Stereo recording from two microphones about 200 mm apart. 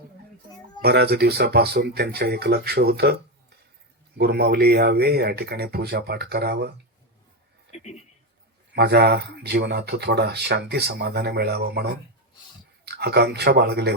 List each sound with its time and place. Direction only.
0.8 s speech: 50° right (ahead or behind)
4.2 s speech: 55° right (ahead or behind)
7.7 s speech: 35° left (ahead or behind)
8.7 s speech: 55° right (ahead or behind)